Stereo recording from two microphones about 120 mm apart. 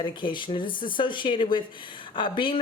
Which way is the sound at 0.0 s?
40° left (ahead or behind).